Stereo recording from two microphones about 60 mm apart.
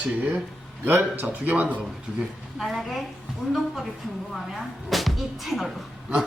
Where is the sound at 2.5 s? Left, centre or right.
Centre.